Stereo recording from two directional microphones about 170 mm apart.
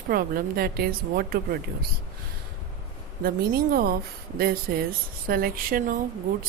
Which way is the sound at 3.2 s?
60° right (ahead or behind).